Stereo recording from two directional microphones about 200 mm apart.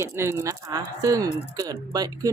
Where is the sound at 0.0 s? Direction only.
15° right (ahead or behind).